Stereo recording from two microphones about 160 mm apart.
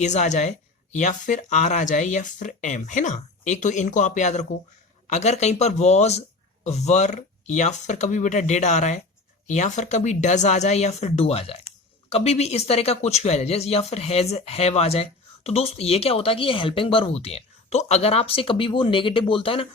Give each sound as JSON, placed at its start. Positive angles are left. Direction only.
{"t": 0.0, "sound": "speech", "side_deg": 45}